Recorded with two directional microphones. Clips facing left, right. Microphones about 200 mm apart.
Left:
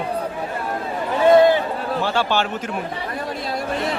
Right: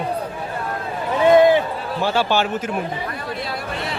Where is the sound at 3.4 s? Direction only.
45° left (ahead or behind).